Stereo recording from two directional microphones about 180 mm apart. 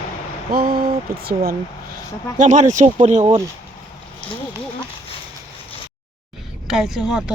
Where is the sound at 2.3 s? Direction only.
45° right (ahead or behind).